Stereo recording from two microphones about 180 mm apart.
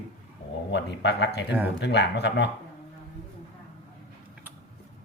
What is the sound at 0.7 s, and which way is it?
Speech, 85° left.